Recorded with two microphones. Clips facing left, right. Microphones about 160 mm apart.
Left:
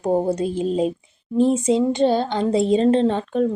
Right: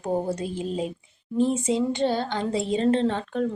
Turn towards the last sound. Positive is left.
turn(degrees=15)  # may be behind; listen again after turning